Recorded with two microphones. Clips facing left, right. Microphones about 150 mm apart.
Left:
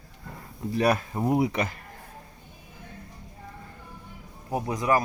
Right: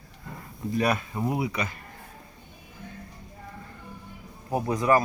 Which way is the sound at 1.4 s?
50° left (ahead or behind).